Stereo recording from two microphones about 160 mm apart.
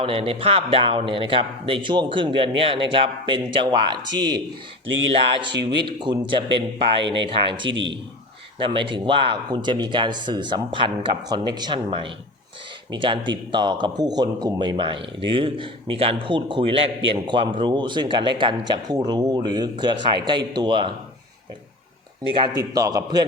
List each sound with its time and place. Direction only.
0.0 s speech: 35° right (ahead or behind)
5.5 s speech: 90° right
5.8 s speech: 30° right (ahead or behind)
22.4 s speech: 20° right (ahead or behind)